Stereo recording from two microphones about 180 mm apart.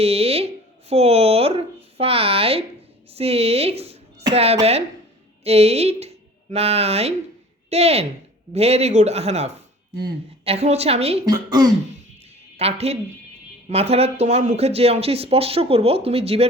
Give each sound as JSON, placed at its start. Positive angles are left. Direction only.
{"t": 0.0, "sound": "speech", "side_deg": -35}
{"t": 4.2, "sound": "a sound", "side_deg": -25}
{"t": 5.4, "sound": "speech", "side_deg": -35}
{"t": 11.3, "sound": "speech", "side_deg": -20}
{"t": 12.5, "sound": "speech", "side_deg": -35}